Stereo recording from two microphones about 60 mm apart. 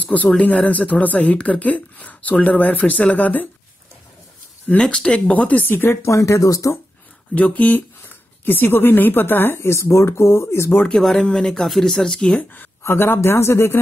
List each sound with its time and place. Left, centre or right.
0.0 s speech: left
4.6 s speech: centre
5.3 s speech: left
6.0 s speech: left
7.3 s a woman's voice: left
11.0 s speech: centre
12.8 s a woman's voice: left